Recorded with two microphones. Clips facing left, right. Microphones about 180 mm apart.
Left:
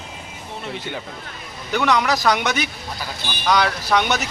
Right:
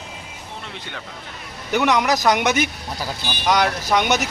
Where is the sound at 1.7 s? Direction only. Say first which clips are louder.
Right 1 dB; 15° right (ahead or behind).